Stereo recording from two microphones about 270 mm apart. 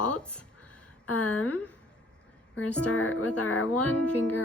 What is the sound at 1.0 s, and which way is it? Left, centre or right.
Speech, left.